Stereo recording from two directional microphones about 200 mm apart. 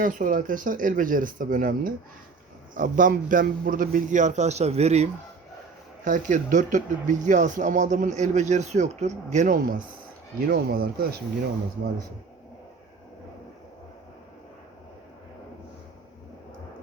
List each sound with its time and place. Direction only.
0.0 s speech: 45° right (ahead or behind)
6.1 s speech: 40° right (ahead or behind)